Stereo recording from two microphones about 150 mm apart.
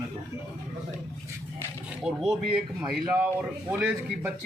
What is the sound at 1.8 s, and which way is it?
Speech, centre (ahead or behind).